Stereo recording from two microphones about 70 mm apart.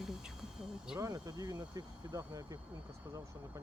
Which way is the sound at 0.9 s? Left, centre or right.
Right.